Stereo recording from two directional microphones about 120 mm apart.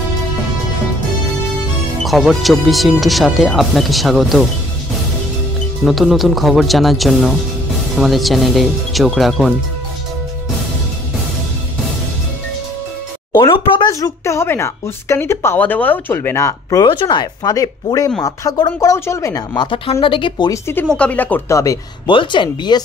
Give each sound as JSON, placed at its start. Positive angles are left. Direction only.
{"t": 2.0, "sound": "speech", "side_deg": 0}
{"t": 5.9, "sound": "speech", "side_deg": 0}
{"t": 13.4, "sound": "a sound", "side_deg": 45}
{"t": 13.8, "sound": "speech", "side_deg": 30}
{"t": 16.8, "sound": "speech", "side_deg": 40}
{"t": 19.9, "sound": "speech", "side_deg": 45}
{"t": 20.9, "sound": "speech", "side_deg": 10}
{"t": 21.5, "sound": "speech", "side_deg": 25}
{"t": 22.0, "sound": "speech", "side_deg": 40}